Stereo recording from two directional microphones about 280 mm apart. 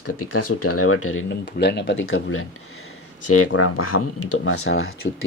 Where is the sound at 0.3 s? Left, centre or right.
Left.